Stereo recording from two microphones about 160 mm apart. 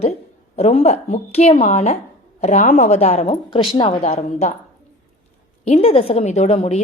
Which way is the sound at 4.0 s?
45° left (ahead or behind).